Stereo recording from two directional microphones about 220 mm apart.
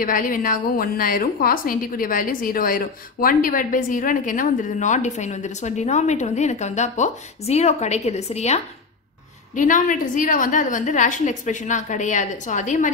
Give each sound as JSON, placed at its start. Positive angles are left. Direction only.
{"t": 0.0, "sound": "a woman's voice", "side_deg": 40}